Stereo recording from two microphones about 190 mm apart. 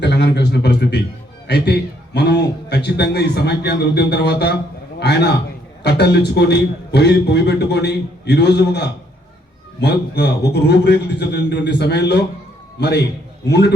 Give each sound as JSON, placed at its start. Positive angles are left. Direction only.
{"t": 0.0, "sound": "a man's voice", "side_deg": 65}